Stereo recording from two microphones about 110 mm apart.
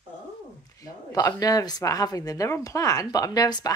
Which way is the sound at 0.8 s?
35° left (ahead or behind).